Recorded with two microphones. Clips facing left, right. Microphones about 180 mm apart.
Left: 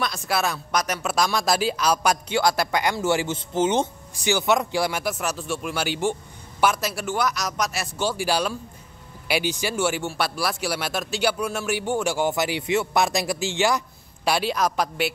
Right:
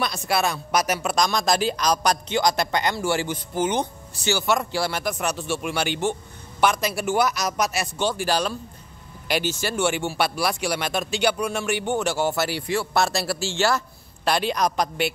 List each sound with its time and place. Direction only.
0.0 s speech: centre (ahead or behind)
1.1 s a man's voice: 5° left (ahead or behind); by 3.9 s 25° left (ahead or behind)
4.1 s a man's voice: 15° left (ahead or behind)